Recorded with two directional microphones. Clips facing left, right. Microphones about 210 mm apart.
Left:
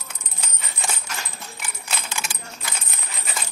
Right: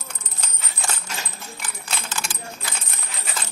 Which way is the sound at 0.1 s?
5° left (ahead or behind).